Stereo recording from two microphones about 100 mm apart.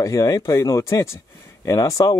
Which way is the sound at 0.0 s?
35° left (ahead or behind).